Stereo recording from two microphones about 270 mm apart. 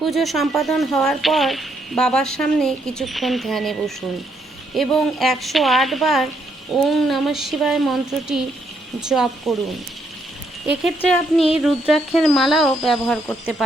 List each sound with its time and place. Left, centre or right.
0.0 s speech: centre
10.7 s speech: centre